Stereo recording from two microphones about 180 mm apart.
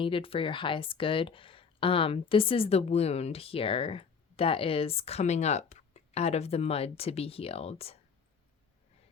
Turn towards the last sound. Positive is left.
turn(degrees=35)  # may be behind; listen again after turning